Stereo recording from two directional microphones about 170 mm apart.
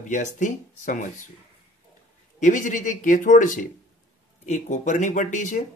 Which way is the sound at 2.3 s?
45° left (ahead or behind).